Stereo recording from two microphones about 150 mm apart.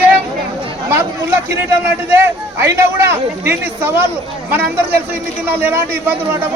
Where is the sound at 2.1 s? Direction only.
15° right (ahead or behind).